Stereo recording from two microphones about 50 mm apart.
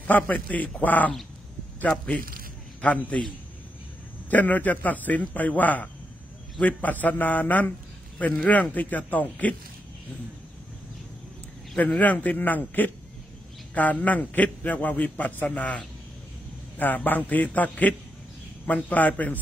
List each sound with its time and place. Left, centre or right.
0.0 s a man's voice: left
4.3 s a man's voice: left
11.7 s a man's voice: left